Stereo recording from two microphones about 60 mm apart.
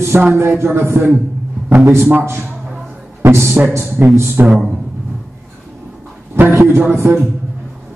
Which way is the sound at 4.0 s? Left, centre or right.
Right.